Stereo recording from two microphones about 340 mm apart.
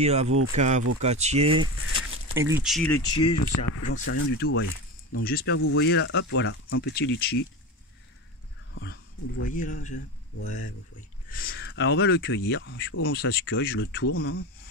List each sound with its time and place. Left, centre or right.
0.0 s speech: centre
3.3 s speech: left
4.1 s speech: left
8.7 s speech: left